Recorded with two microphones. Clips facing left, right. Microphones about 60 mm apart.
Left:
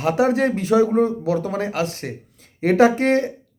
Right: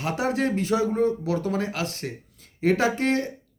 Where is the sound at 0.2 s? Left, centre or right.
Left.